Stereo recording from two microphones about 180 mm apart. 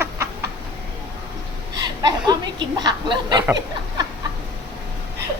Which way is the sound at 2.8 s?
25° right (ahead or behind).